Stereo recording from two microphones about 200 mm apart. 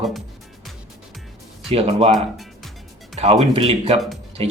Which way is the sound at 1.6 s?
30° right (ahead or behind).